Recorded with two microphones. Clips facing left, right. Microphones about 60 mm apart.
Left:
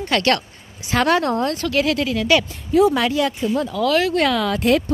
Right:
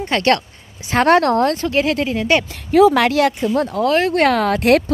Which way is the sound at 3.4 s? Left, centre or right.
Right.